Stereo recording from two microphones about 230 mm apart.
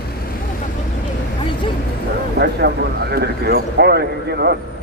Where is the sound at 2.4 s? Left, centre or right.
Right.